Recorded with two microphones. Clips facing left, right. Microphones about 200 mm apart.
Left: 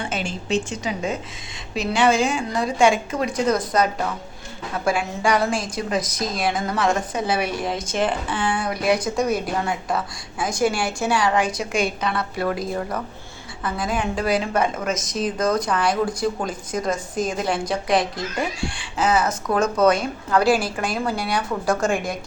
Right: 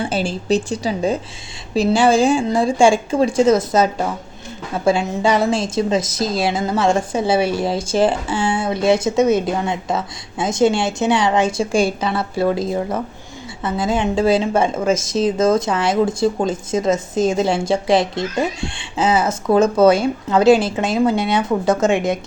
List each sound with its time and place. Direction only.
0.0 s a woman's voice: 35° right (ahead or behind)